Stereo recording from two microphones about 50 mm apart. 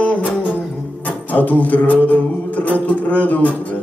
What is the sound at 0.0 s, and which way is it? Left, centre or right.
Music, left.